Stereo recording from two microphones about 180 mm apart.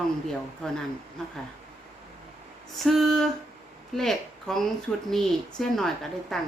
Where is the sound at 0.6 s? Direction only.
5° left (ahead or behind).